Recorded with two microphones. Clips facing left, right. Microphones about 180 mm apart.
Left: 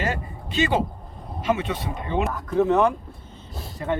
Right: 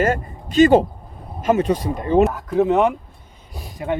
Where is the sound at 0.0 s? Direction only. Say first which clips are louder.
Right 8 dB; 45° right (ahead or behind).